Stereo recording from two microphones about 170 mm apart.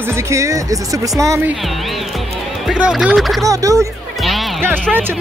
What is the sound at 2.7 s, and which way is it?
Speech, centre (ahead or behind).